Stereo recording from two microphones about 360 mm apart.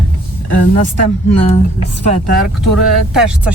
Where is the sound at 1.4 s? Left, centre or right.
Centre.